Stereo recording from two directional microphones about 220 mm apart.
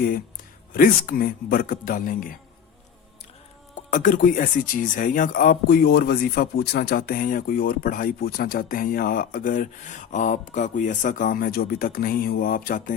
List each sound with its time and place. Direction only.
0.7 s speech: 40° left (ahead or behind)
3.8 s speech: 35° left (ahead or behind)